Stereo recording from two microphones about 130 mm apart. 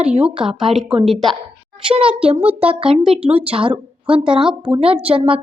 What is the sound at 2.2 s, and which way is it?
A woman's voice, 45° right (ahead or behind).